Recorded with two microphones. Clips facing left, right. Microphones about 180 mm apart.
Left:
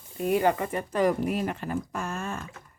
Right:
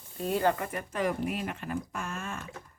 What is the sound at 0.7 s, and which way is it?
Speech, 35° left (ahead or behind).